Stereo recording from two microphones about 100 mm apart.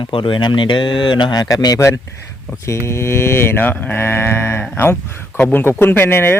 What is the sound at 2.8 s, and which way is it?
Speech, 25° left (ahead or behind).